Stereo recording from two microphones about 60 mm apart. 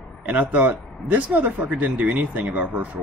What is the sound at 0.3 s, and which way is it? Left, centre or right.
Speech, right.